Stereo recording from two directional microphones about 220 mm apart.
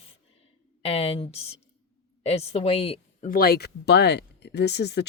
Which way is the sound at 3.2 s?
40° left (ahead or behind).